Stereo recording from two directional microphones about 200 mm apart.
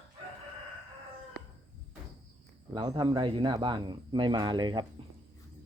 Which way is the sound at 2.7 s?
25° right (ahead or behind).